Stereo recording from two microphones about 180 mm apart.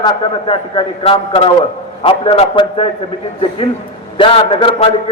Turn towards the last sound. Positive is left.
turn(degrees=35)  # may be behind; listen again after turning